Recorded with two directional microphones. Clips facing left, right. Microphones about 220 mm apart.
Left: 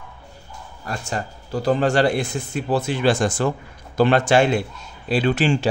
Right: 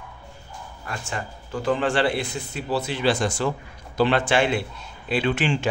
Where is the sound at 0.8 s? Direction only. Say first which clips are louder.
Left 4 dB; 35° left (ahead or behind).